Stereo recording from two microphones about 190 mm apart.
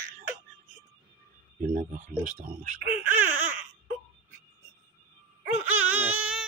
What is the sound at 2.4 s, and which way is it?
Speech, 50° right (ahead or behind).